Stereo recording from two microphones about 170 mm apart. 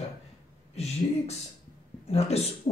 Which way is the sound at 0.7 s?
40° left (ahead or behind).